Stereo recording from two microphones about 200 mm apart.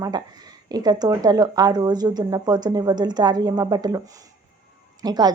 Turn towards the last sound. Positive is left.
turn(degrees=-20)  # may be behind; listen again after turning